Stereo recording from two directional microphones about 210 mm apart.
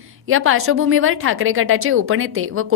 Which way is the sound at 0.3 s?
75° right (ahead or behind).